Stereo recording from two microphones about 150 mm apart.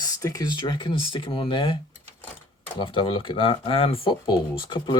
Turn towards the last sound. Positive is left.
turn(degrees=30)  # may be behind; listen again after turning